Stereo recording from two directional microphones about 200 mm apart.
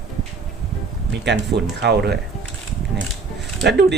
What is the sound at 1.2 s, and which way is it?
Speech, 60° right (ahead or behind).